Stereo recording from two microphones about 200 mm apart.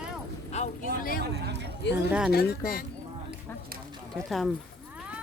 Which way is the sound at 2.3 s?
50° left (ahead or behind).